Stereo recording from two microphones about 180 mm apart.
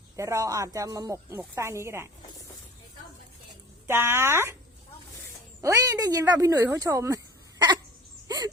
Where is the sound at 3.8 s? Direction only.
15° right (ahead or behind).